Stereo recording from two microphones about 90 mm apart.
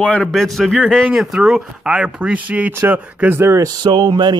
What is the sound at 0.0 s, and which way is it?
A man's voice, 5° left (ahead or behind).